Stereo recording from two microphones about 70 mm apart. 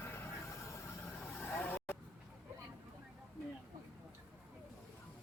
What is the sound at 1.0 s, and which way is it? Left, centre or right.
Vehicle, left.